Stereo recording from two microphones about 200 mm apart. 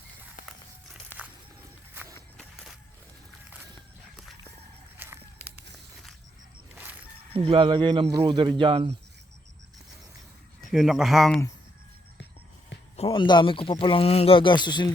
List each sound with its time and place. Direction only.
2.1 s a sound: 5° left (ahead or behind)
4.9 s walk: 10° right (ahead or behind)
7.3 s speech: 25° right (ahead or behind)
10.7 s speech: centre (ahead or behind)
13.0 s speech: 25° left (ahead or behind)